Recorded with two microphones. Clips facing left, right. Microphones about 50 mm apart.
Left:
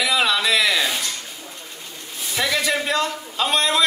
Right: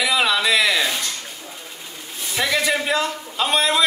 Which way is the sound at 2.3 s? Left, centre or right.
Centre.